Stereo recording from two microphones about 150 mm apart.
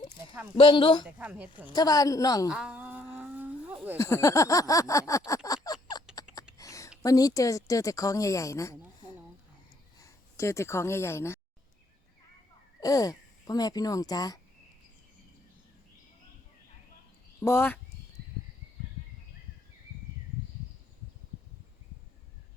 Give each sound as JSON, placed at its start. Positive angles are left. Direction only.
{"t": 0.5, "sound": "a man's voice", "side_deg": 35}
{"t": 1.0, "sound": "a woman's voice", "side_deg": -10}
{"t": 1.7, "sound": "a woman's voice", "side_deg": 25}
{"t": 2.5, "sound": "a sound", "side_deg": -5}
{"t": 3.9, "sound": "a woman's voice", "side_deg": 20}
{"t": 5.6, "sound": "a sound", "side_deg": 25}
{"t": 7.0, "sound": "a woman's voice", "side_deg": 25}
{"t": 12.8, "sound": "speech", "side_deg": 25}
{"t": 17.4, "sound": "speech", "side_deg": 15}